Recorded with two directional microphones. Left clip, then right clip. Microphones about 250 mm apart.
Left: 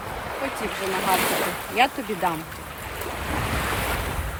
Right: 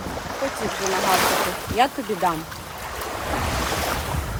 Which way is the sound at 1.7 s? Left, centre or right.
Centre.